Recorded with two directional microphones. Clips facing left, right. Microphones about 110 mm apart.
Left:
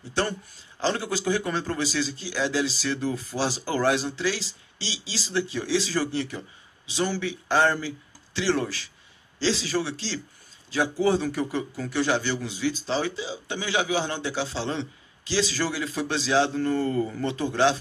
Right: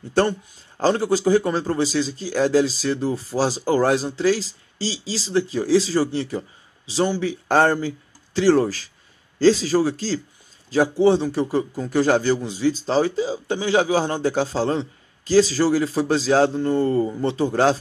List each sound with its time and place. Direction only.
0.2 s speech: 45° right (ahead or behind)
7.2 s speech: 40° right (ahead or behind)
16.5 s speech: 25° right (ahead or behind)